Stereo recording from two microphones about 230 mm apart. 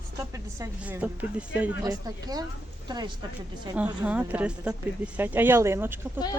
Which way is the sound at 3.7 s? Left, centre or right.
Centre.